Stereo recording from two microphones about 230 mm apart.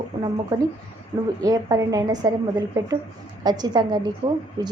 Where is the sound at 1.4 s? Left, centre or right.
Centre.